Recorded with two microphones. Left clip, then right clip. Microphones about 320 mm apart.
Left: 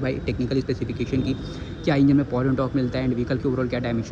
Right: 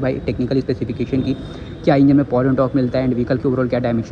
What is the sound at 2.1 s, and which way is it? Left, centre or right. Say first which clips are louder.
Speech: right 7 dB; right.